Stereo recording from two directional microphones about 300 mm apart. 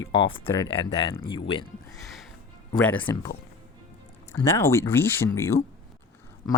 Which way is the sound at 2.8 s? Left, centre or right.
Centre.